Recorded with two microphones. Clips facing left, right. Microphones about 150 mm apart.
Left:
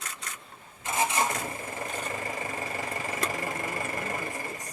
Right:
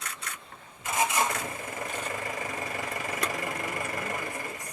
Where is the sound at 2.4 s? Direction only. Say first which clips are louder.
Even; 25° left (ahead or behind).